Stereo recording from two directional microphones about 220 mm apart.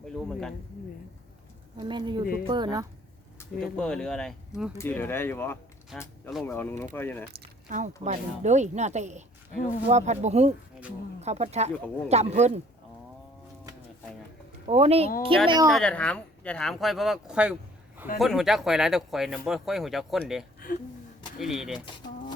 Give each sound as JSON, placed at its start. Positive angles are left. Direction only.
{"t": 0.3, "sound": "speech", "side_deg": 5}
{"t": 1.8, "sound": "speech", "side_deg": -20}
{"t": 3.3, "sound": "speech", "side_deg": 5}
{"t": 5.9, "sound": "speech", "side_deg": 0}
{"t": 6.4, "sound": "speech", "side_deg": 10}
{"t": 7.3, "sound": "squish", "side_deg": -35}
{"t": 8.0, "sound": "speech", "side_deg": -30}
{"t": 14.7, "sound": "speech", "side_deg": -25}
{"t": 15.7, "sound": "speech", "side_deg": 5}